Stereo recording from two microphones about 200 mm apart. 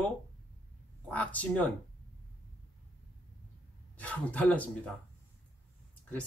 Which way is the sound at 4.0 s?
5° left (ahead or behind).